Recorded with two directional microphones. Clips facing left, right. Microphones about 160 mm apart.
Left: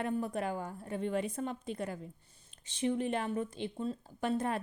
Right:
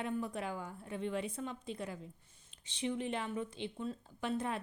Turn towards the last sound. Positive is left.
turn(degrees=45)  # may be behind; listen again after turning